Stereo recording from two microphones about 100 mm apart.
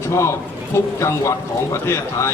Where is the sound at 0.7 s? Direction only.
30° left (ahead or behind).